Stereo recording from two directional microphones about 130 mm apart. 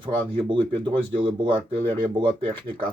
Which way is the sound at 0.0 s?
35° right (ahead or behind).